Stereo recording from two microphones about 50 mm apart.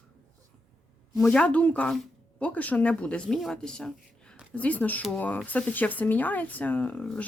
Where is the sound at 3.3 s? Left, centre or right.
Centre.